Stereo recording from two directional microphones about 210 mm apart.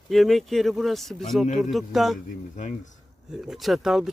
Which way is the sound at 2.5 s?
35° left (ahead or behind).